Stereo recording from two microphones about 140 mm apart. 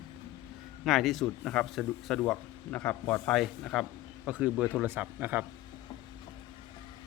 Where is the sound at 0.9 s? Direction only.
Centre (ahead or behind).